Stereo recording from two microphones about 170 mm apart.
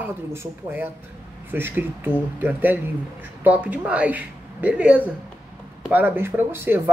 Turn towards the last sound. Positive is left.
turn(degrees=-10)  # may be behind; listen again after turning